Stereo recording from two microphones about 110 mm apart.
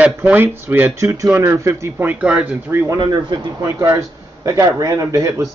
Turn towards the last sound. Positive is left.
turn(degrees=-30)  # may be behind; listen again after turning